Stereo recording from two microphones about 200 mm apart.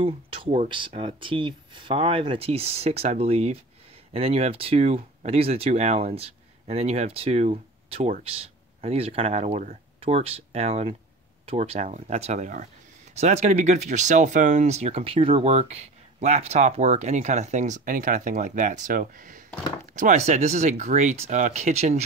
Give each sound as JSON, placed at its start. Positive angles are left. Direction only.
{"t": 0.0, "sound": "speech", "side_deg": -25}